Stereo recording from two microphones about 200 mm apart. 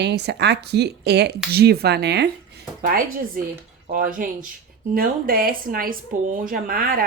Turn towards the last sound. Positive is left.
turn(degrees=-45)  # may be behind; listen again after turning